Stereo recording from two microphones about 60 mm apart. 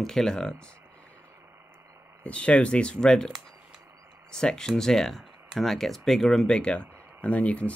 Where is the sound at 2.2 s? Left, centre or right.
Left.